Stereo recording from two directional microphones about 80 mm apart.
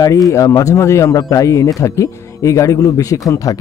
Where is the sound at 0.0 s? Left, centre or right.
Left.